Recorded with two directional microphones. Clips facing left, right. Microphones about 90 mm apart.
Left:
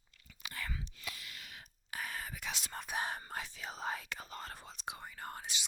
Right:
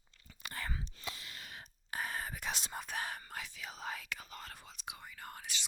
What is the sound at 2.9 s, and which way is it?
Speech, 20° left (ahead or behind).